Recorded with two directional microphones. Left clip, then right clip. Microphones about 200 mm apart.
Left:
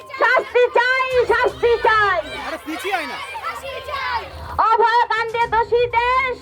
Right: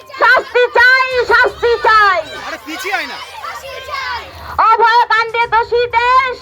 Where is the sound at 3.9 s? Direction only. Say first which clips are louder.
Right 2 dB; 10° left (ahead or behind).